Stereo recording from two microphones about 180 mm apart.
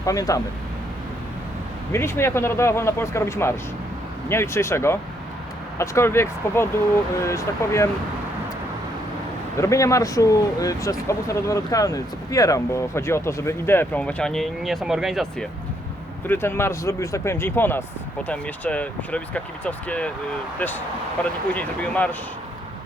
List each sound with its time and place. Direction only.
0.0 s speech: 20° left (ahead or behind)
1.9 s speech: 15° left (ahead or behind)
9.6 s speech: 15° left (ahead or behind); by 15.4 s centre (ahead or behind)
16.2 s speech: 10° left (ahead or behind)